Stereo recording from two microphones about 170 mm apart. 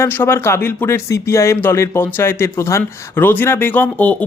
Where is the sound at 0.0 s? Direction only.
15° left (ahead or behind).